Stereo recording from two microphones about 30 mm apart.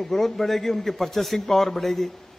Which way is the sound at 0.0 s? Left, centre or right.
Centre.